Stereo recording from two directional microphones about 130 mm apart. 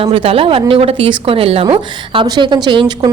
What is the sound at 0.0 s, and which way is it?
A woman's voice, 45° right (ahead or behind).